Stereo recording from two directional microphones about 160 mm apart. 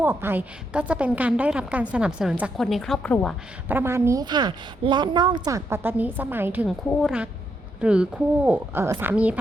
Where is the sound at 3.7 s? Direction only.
15° right (ahead or behind).